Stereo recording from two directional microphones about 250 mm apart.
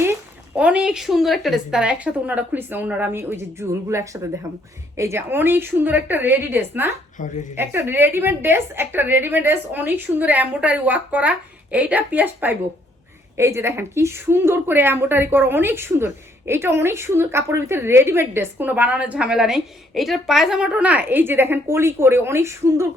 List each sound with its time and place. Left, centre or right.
0.0 s a woman's voice: centre
7.2 s a woman's voice: left
7.5 s a woman's voice: centre